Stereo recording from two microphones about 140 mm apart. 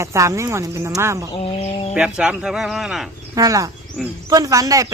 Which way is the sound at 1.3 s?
45° left (ahead or behind).